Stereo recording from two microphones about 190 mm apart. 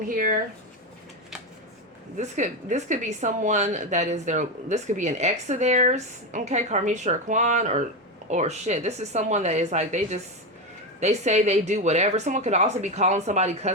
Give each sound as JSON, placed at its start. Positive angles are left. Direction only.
{"t": 0.1, "sound": "speech", "side_deg": -45}
{"t": 2.1, "sound": "speech", "side_deg": -40}